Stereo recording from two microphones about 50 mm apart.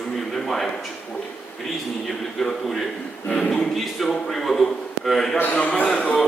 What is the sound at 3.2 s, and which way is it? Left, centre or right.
Speech, centre.